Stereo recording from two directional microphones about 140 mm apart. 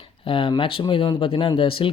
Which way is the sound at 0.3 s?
40° left (ahead or behind).